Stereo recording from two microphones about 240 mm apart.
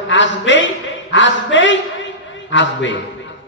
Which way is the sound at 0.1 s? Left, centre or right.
Left.